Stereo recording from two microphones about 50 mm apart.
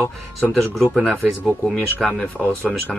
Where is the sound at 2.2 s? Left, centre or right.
Left.